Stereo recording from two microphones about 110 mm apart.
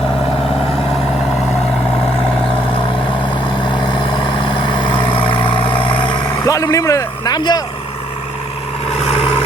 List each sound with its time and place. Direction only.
3.7 s vehicle: 45° left (ahead or behind)
6.5 s a man's voice: 30° left (ahead or behind)
8.9 s vehicle: 60° left (ahead or behind)